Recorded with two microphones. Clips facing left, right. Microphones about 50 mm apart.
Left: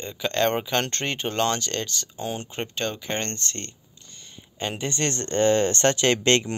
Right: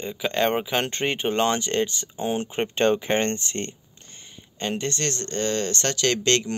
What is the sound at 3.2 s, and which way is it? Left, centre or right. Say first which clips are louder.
Speech: right 6 dB; centre.